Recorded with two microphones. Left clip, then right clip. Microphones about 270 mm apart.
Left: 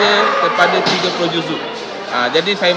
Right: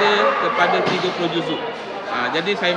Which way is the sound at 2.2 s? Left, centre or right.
Centre.